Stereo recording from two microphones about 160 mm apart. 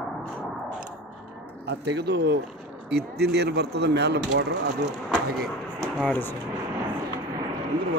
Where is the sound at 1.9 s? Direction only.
90° right.